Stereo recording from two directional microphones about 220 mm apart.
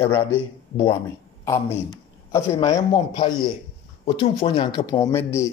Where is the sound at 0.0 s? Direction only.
10° left (ahead or behind).